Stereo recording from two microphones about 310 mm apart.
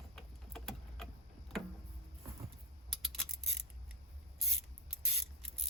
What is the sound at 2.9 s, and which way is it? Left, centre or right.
Coin, centre.